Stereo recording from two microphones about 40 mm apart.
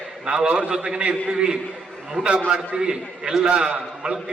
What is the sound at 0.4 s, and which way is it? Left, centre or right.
Speech, right.